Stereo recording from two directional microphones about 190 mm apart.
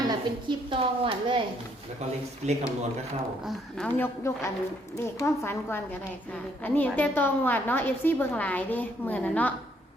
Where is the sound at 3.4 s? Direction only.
5° left (ahead or behind).